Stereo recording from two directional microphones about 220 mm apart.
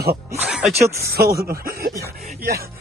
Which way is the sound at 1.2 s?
45° right (ahead or behind).